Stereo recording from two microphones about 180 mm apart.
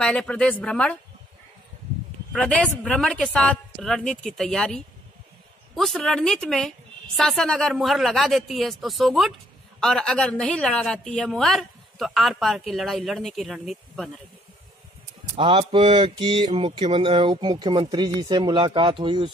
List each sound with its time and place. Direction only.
0.0 s a woman's voice: 5° left (ahead or behind)
2.3 s a woman's voice: 5° left (ahead or behind)
15.3 s mantra: 30° right (ahead or behind)